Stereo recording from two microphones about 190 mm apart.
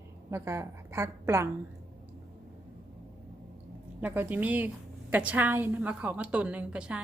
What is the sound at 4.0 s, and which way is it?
Speech, 10° right (ahead or behind).